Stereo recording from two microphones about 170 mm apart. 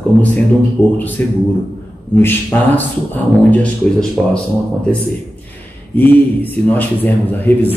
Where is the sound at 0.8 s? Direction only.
10° left (ahead or behind).